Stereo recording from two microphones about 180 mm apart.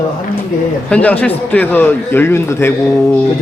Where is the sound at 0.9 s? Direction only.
10° left (ahead or behind).